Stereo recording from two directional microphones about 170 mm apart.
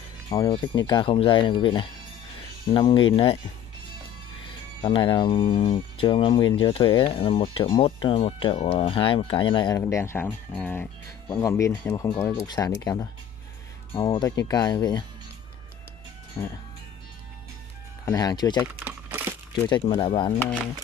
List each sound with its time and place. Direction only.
0.3 s speech: 25° left (ahead or behind)
4.8 s speech: 30° left (ahead or behind)
9.8 s speech: 15° left (ahead or behind)
16.4 s speech: 25° left (ahead or behind)
18.0 s speech: 20° left (ahead or behind)
18.6 s crumpling: 10° right (ahead or behind)
19.7 s speech: 30° left (ahead or behind)